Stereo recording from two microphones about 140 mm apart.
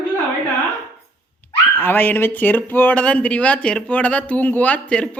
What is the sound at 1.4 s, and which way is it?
A man's voice, 15° left (ahead or behind).